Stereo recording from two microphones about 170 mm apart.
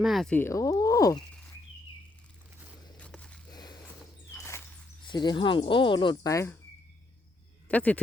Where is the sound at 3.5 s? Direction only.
25° left (ahead or behind).